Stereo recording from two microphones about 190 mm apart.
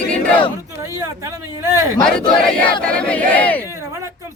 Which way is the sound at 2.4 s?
5° left (ahead or behind).